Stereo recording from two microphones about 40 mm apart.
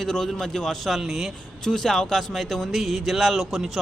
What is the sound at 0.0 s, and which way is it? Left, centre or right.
Speech, centre.